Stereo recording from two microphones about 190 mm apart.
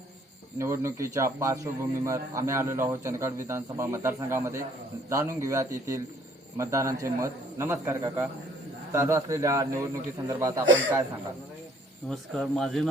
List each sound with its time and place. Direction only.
0.6 s a man's voice: 15° right (ahead or behind)
12.0 s speech: 5° left (ahead or behind)